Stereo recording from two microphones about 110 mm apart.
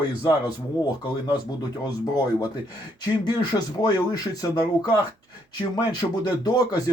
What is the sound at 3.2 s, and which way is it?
Speech, 35° left (ahead or behind).